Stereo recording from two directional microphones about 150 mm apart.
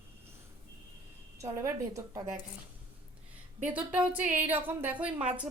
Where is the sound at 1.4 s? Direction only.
20° right (ahead or behind).